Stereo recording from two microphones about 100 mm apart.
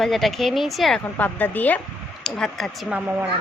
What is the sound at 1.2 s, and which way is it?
Speech, 20° left (ahead or behind).